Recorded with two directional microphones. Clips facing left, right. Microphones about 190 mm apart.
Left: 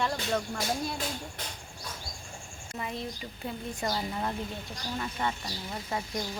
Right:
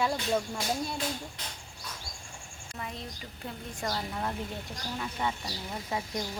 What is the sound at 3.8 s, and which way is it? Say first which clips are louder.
A woman's voice: left 1 dB; 5° left (ahead or behind).